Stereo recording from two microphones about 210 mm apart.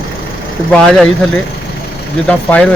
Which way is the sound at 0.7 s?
Centre (ahead or behind).